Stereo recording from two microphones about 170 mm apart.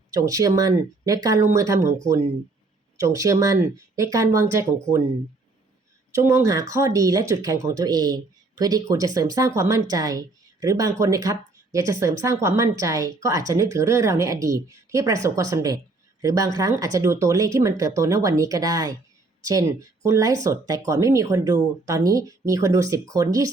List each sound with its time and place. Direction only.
0.1 s speech: 20° right (ahead or behind)
6.1 s speech: 15° right (ahead or behind)